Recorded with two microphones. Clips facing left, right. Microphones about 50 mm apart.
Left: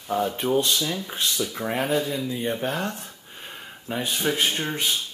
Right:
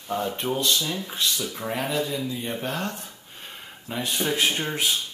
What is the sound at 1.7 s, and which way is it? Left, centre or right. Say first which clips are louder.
Speech: left 3 dB; left.